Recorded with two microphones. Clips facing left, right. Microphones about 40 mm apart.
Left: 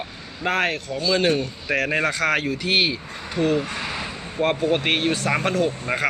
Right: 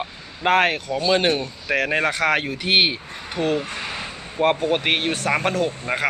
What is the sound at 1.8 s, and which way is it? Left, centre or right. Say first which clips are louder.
Speech: right 1 dB; right.